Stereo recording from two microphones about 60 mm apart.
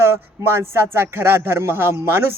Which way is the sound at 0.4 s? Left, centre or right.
Right.